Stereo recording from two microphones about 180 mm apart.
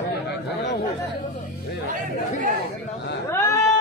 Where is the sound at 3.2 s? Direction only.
15° left (ahead or behind).